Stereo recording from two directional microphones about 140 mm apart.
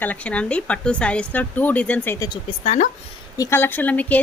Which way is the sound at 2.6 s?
60° left (ahead or behind).